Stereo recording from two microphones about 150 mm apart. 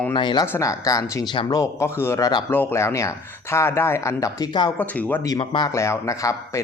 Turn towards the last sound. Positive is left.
turn(degrees=20)  # may be behind; listen again after turning